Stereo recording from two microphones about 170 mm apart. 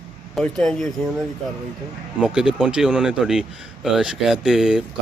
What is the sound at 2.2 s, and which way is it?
Speech, 5° right (ahead or behind).